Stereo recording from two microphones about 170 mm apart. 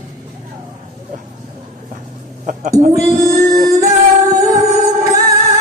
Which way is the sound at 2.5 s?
50° right (ahead or behind).